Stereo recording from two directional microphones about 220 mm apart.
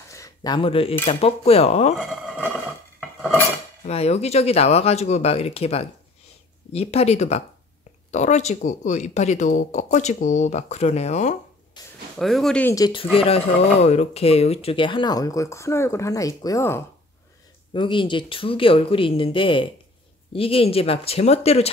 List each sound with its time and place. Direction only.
0.1 s a sound: 15° left (ahead or behind)
1.0 s speech: 30° left (ahead or behind)
2.0 s speech: centre (ahead or behind)
3.8 s speech: 30° left (ahead or behind)
11.8 s a sound: 20° left (ahead or behind)
12.2 s speech: centre (ahead or behind); by 21.6 s 30° left (ahead or behind)